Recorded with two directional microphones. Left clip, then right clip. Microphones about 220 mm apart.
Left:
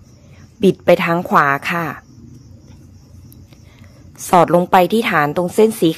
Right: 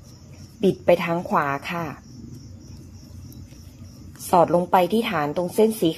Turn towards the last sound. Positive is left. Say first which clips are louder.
# left 6 dB
turn(degrees=35)  # may be behind; listen again after turning